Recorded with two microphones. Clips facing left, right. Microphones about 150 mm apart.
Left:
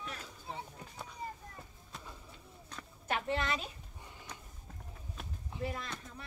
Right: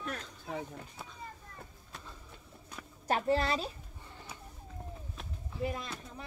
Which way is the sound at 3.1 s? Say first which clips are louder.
Right 5 dB; 35° right (ahead or behind).